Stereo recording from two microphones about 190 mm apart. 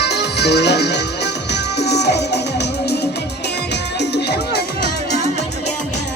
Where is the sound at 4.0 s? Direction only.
60° left (ahead or behind).